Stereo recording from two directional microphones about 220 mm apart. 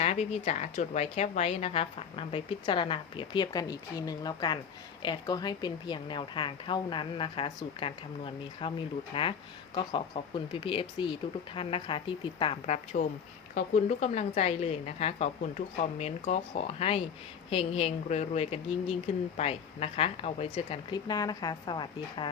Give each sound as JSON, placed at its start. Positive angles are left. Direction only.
{"t": 0.0, "sound": "a woman's voice", "side_deg": 30}